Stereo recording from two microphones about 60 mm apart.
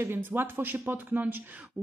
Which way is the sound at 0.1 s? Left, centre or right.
Right.